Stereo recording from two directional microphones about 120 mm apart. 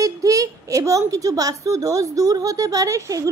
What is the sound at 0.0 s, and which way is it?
A woman's voice, 30° right (ahead or behind).